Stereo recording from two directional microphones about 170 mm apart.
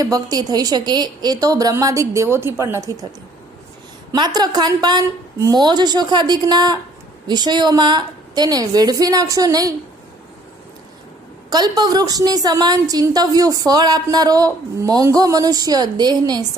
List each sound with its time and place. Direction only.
0.0 s a woman's voice: 20° right (ahead or behind)
4.1 s a woman's voice: 25° right (ahead or behind)
11.5 s a woman's voice: 25° right (ahead or behind)